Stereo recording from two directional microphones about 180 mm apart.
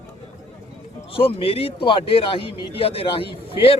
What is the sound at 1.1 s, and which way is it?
Speech, 30° left (ahead or behind).